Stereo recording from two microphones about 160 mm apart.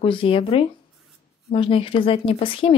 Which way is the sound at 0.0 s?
35° left (ahead or behind).